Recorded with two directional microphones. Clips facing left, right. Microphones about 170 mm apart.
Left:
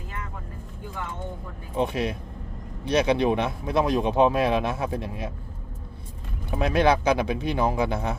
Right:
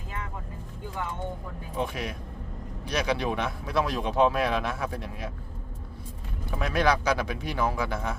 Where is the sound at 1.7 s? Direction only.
25° left (ahead or behind).